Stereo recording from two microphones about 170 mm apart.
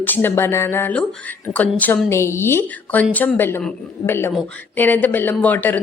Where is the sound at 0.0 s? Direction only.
10° left (ahead or behind).